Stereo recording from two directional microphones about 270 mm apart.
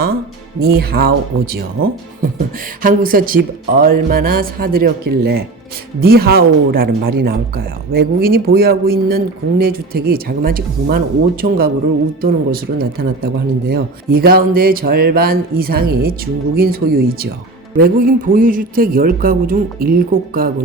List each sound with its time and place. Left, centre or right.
0.6 s speech: right